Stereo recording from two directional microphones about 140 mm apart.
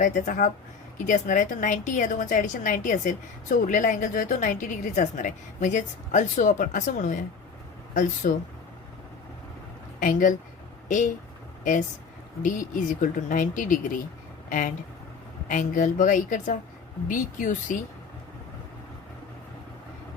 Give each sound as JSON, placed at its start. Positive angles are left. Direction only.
{"t": 0.0, "sound": "a woman's voice", "side_deg": 60}
{"t": 8.2, "sound": "speech", "side_deg": 90}
{"t": 10.0, "sound": "speech", "side_deg": 70}
{"t": 12.4, "sound": "speech", "side_deg": 70}
{"t": 15.4, "sound": "speech", "side_deg": 65}